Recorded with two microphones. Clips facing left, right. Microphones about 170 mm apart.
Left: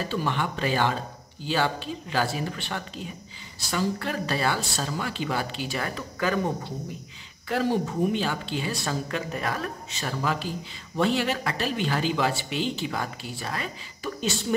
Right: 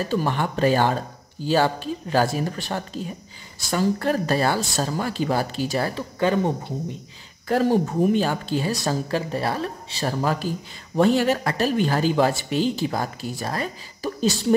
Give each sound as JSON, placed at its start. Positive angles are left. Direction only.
{"t": 0.1, "sound": "speech", "side_deg": -40}
{"t": 7.4, "sound": "speech", "side_deg": -45}